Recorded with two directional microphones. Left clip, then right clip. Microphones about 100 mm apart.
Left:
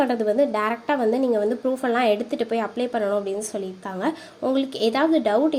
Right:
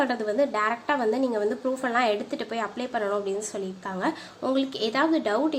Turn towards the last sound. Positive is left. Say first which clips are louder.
# left 4 dB
turn(degrees=35)  # may be behind; listen again after turning